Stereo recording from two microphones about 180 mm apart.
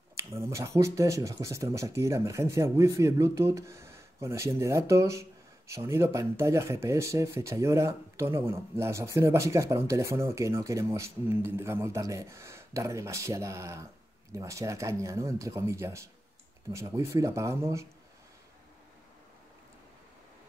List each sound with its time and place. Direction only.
0.1 s speech: 15° right (ahead or behind)